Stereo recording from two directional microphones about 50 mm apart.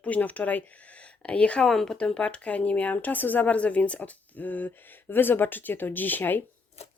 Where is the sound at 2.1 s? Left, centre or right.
Left.